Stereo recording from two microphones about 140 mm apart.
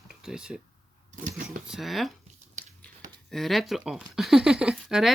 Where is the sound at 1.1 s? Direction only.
75° right (ahead or behind).